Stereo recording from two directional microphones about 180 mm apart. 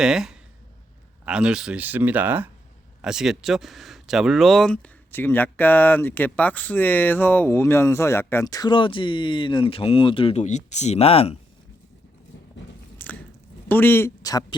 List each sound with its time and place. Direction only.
0.0 s speech: 5° right (ahead or behind); by 11.3 s 30° left (ahead or behind)
13.0 s biting: 10° left (ahead or behind)
13.7 s speech: 10° left (ahead or behind)